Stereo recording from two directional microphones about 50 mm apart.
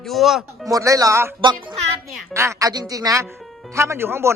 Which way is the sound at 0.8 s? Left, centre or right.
Right.